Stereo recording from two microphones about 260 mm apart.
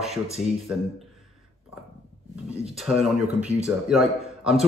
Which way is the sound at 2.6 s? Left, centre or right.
Centre.